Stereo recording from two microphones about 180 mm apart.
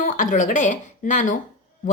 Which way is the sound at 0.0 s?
50° left (ahead or behind).